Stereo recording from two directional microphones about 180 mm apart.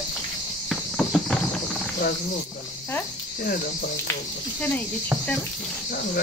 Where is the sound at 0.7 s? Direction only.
Centre (ahead or behind).